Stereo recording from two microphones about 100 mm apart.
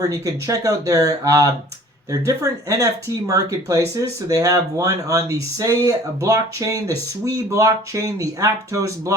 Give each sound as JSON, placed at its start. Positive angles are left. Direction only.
{"t": 0.0, "sound": "speech", "side_deg": -35}